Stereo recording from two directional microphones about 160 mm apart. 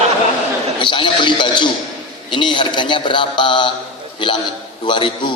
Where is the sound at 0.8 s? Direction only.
30° left (ahead or behind).